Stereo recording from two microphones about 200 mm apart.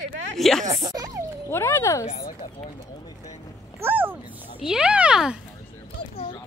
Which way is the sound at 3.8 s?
10° right (ahead or behind).